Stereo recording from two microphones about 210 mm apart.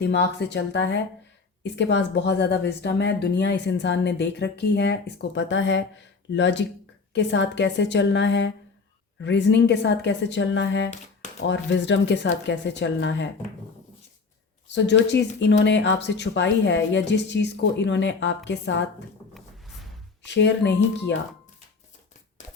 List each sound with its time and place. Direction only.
0.0 s speech: 55° left (ahead or behind)
14.8 s speech: 55° left (ahead or behind)
19.3 s a sound: centre (ahead or behind)
20.2 s speech: 55° left (ahead or behind)